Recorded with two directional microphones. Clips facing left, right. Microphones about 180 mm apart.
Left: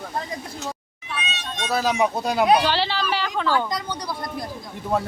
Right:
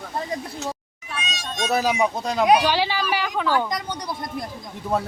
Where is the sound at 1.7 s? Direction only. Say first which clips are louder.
Right 1 dB; 10° right (ahead or behind).